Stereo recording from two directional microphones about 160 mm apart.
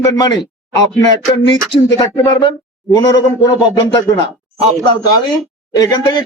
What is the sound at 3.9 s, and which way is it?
Speech, 30° left (ahead or behind).